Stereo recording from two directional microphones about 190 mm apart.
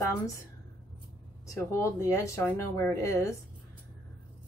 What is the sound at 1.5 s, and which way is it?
A woman's voice, 15° left (ahead or behind).